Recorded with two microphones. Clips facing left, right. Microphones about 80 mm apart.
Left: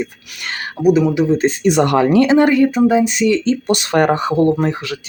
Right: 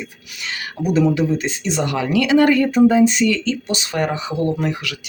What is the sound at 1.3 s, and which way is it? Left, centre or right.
Speech, left.